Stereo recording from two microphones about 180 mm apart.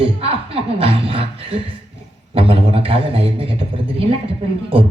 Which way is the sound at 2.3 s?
30° right (ahead or behind).